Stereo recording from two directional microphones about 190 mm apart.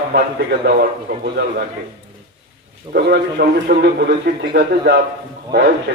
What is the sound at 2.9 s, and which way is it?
A man's voice, 55° right (ahead or behind).